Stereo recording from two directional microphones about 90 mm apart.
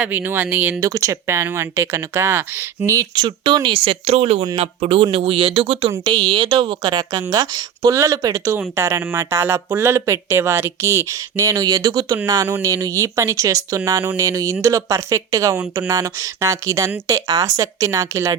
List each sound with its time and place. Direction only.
0.0 s speech: 20° right (ahead or behind)
0.8 s speech: 40° right (ahead or behind)
3.2 s speech: 60° right (ahead or behind); by 5.9 s 80° right
6.1 s speech: 60° right (ahead or behind); by 8.5 s 40° right (ahead or behind)
8.7 s speech: 30° right (ahead or behind)